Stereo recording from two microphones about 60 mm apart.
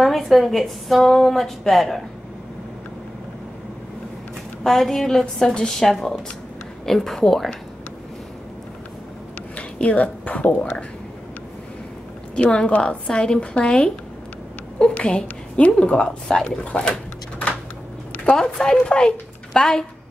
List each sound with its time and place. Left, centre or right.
0.0 s a woman's voice: centre
4.6 s a woman's voice: centre
9.6 s speech: left
12.4 s a woman's voice: centre
18.3 s a woman's voice: centre